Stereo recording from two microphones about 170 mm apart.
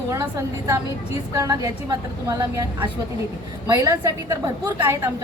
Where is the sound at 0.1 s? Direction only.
20° right (ahead or behind).